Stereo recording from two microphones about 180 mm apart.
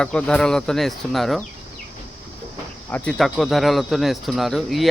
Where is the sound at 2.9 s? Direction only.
5° left (ahead or behind).